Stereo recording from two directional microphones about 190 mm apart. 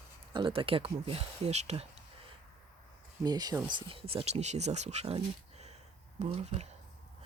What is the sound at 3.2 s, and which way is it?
Speech, 20° right (ahead or behind).